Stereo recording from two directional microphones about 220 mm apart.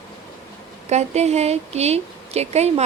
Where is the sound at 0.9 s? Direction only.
30° right (ahead or behind).